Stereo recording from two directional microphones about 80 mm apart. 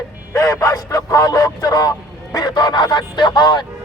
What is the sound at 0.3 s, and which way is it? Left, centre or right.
A man's voice, left.